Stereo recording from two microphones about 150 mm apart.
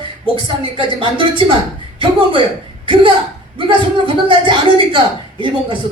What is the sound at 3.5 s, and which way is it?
A man's voice, 35° right (ahead or behind).